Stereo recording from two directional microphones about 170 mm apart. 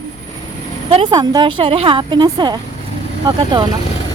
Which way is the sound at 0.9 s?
25° right (ahead or behind).